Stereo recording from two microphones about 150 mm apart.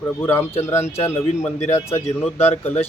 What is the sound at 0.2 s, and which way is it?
Speech, 15° left (ahead or behind).